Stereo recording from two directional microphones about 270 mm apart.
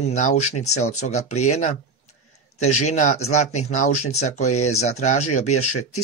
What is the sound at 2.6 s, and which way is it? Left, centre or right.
Speech, left.